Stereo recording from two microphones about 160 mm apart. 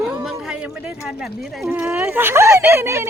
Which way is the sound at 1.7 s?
10° right (ahead or behind).